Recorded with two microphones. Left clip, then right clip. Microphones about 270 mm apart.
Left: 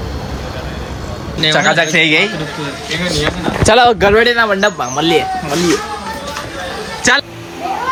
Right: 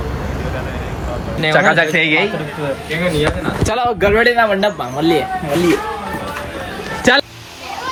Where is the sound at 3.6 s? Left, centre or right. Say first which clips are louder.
Left 9 dB; left.